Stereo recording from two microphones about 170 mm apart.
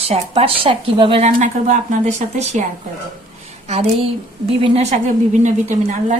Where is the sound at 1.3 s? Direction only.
45° right (ahead or behind).